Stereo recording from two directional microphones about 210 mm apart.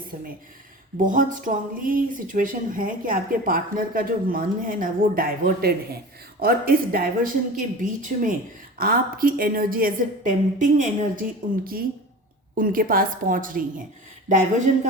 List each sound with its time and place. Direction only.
1.0 s a woman's voice: 40° right (ahead or behind)